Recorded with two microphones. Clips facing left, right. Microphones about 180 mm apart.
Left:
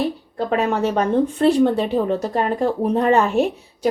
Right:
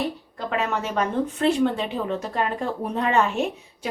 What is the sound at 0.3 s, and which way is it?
Speech, 35° left (ahead or behind).